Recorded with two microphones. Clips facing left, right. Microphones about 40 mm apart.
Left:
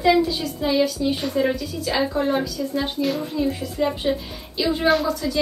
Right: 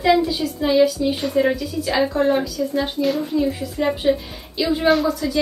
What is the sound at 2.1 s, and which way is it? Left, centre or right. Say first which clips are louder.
Speech: right 6 dB; centre.